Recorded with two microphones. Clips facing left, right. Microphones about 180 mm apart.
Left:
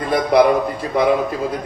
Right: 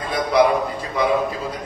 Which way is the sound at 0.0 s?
55° left (ahead or behind).